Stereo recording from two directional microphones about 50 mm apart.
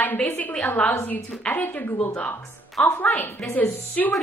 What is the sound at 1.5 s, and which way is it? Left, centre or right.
Speech, left.